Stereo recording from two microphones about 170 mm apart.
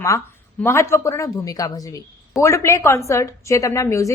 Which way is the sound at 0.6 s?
15° left (ahead or behind).